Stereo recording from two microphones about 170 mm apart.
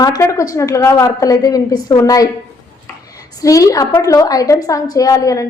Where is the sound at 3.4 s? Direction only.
20° left (ahead or behind).